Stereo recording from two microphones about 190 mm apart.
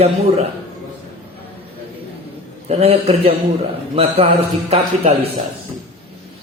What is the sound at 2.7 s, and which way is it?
A man's voice, 30° right (ahead or behind).